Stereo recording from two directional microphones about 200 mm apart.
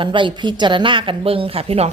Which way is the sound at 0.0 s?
25° right (ahead or behind).